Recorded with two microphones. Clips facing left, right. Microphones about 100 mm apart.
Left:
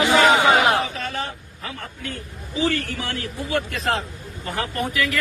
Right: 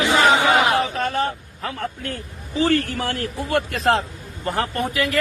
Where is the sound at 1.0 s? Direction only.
55° right (ahead or behind).